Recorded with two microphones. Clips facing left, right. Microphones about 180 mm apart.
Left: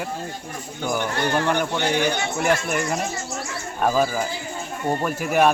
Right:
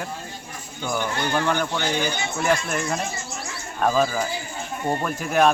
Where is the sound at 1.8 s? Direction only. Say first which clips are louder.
Left 3 dB; 65° left (ahead or behind).